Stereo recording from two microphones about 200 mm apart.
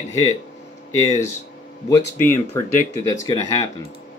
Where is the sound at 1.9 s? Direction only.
15° left (ahead or behind).